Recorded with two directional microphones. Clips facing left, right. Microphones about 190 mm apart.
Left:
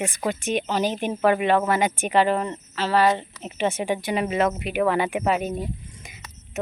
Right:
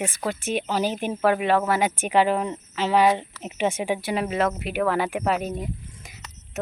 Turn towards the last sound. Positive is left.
turn(degrees=0)  # may be behind; listen again after turning